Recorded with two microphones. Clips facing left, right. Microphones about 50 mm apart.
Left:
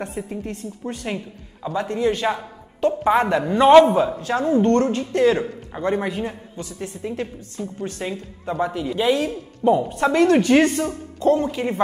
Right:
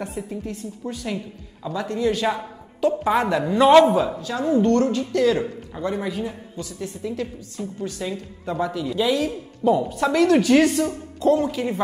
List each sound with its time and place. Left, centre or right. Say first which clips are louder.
0.0 s a woman's voice: left 1 dB; left
1.1 s speech: even; left
2.9 s a woman's voice: left 3 dB; centre
4.2 s a woman's voice: left 2 dB; left
6.5 s a woman's voice: even; left
8.1 s speech: left 1 dB; centre
11.6 s speech: left 1 dB; centre